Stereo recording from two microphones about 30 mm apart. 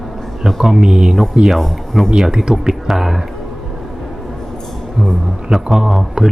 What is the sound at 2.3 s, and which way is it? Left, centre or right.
Speech, right.